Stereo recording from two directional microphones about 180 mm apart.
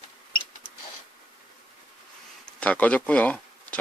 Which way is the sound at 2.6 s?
10° left (ahead or behind).